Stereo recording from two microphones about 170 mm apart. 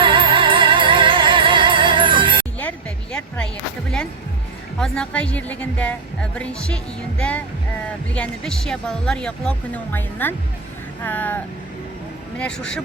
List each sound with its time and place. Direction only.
0.0 s music: 30° right (ahead or behind)
2.6 s music: 5° left (ahead or behind)
4.8 s speech: 5° left (ahead or behind)
12.4 s speech: 5° left (ahead or behind)